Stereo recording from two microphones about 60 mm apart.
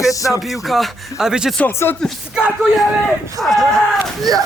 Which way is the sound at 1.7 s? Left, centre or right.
Left.